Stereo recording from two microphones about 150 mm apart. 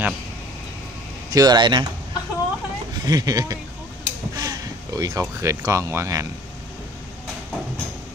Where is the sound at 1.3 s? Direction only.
25° right (ahead or behind).